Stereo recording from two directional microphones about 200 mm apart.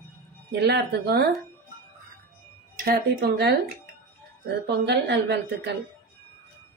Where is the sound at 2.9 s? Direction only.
50° right (ahead or behind).